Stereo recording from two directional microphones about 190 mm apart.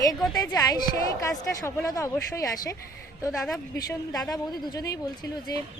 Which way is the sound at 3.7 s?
20° left (ahead or behind).